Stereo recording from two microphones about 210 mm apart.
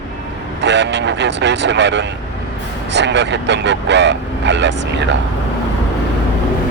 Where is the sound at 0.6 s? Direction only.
55° right (ahead or behind).